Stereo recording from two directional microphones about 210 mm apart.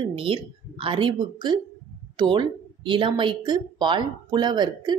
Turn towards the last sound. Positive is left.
turn(degrees=-20)  # may be behind; listen again after turning